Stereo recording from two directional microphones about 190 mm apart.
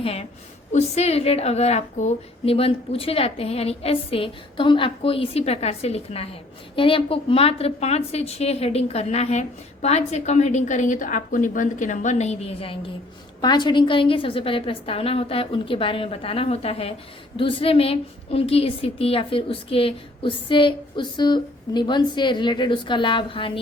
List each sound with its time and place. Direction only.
0.0 s a woman's voice: 30° left (ahead or behind)